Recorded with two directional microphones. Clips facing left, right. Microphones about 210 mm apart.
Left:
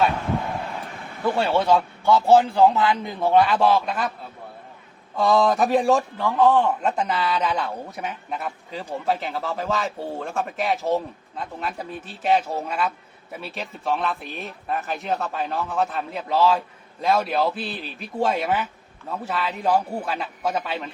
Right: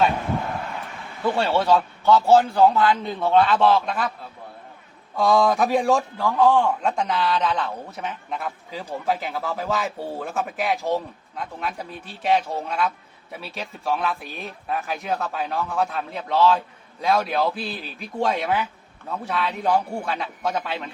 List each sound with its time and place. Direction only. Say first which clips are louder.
1.3 s a man's voice: even; 10° left (ahead or behind)
5.1 s a man's voice: even; centre (ahead or behind)